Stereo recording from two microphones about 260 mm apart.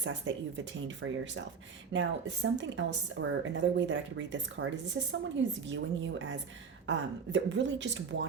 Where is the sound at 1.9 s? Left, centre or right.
Right.